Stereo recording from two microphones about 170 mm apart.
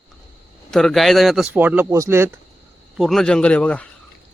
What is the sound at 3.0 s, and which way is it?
Speech, centre (ahead or behind).